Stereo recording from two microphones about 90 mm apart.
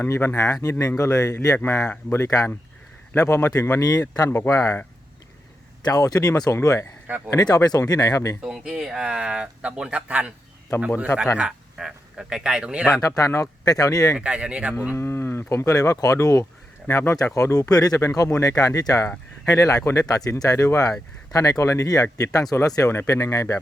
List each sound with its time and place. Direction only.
0.1 s speech: 25° left (ahead or behind)
0.3 s speech: 40° left (ahead or behind)
3.8 s speech: 45° left (ahead or behind)
4.3 s speech: 30° left (ahead or behind)
5.8 s speech: 45° left (ahead or behind)
8.4 s speech: 10° right (ahead or behind)
11.3 s speech: 5° right (ahead or behind)
13.0 s speech: 40° left (ahead or behind)
14.2 s speech: 10° right (ahead or behind)
14.9 s speech: 25° left (ahead or behind)